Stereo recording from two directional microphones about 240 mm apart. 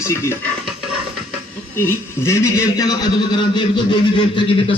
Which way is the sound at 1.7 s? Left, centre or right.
Centre.